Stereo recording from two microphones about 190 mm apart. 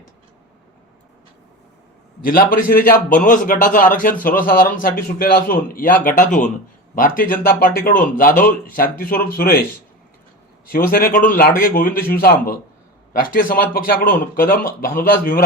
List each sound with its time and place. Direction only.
2.2 s speech: 50° left (ahead or behind)
10.7 s speech: 50° left (ahead or behind)